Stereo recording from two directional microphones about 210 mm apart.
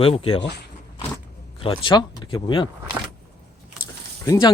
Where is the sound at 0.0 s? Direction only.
25° left (ahead or behind).